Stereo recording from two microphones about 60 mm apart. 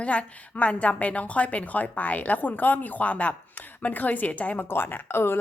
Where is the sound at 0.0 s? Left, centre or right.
Left.